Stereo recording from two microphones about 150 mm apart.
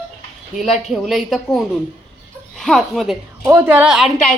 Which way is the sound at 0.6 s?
Centre (ahead or behind).